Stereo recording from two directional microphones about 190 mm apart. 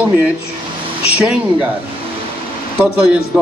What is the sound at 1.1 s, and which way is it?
Speech, 5° right (ahead or behind).